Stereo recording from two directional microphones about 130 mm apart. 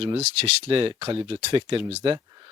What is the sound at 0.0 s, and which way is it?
Speech, 50° right (ahead or behind).